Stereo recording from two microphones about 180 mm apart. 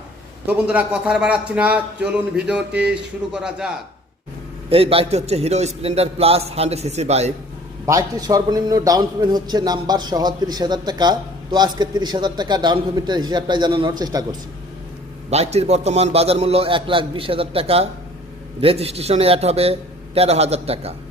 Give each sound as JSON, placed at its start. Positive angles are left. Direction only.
{"t": 0.4, "sound": "a man's voice", "side_deg": -10}
{"t": 4.7, "sound": "a man's voice", "side_deg": -30}
{"t": 7.9, "sound": "a man's voice", "side_deg": -20}
{"t": 15.3, "sound": "a man's voice", "side_deg": -35}